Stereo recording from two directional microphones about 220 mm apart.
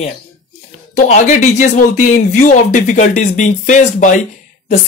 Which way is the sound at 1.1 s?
30° left (ahead or behind).